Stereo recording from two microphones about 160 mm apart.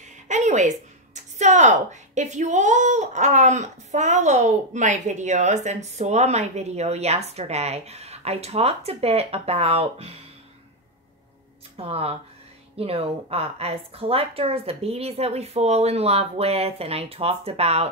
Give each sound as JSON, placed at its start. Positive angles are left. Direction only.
{"t": 0.3, "sound": "a woman's voice", "side_deg": -50}
{"t": 11.7, "sound": "a woman's voice", "side_deg": -40}